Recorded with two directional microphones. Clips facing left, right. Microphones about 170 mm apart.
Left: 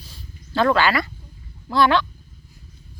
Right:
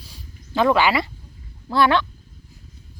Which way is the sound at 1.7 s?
5° right (ahead or behind).